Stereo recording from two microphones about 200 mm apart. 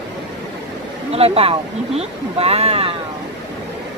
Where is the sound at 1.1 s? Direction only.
30° right (ahead or behind).